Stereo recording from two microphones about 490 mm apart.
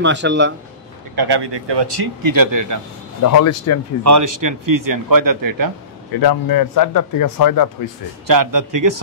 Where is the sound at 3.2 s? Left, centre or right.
Left.